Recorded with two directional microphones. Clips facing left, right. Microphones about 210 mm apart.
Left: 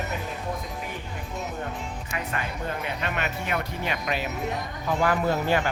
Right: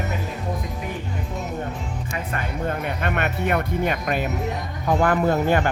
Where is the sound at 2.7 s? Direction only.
50° right (ahead or behind).